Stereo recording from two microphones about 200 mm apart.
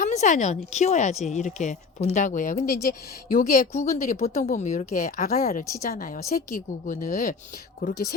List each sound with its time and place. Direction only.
0.0 s a woman's voice: 40° left (ahead or behind)